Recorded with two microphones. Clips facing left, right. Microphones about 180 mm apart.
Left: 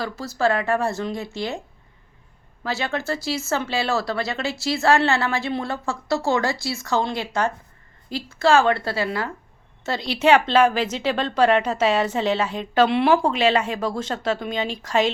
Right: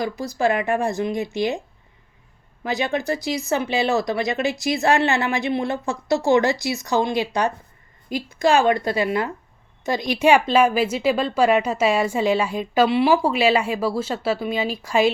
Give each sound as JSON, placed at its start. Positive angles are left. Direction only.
{"t": 0.0, "sound": "speech", "side_deg": -15}
{"t": 2.6, "sound": "speech", "side_deg": -15}